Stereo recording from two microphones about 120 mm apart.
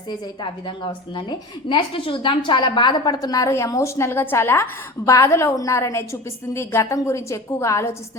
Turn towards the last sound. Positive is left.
turn(degrees=25)  # may be behind; listen again after turning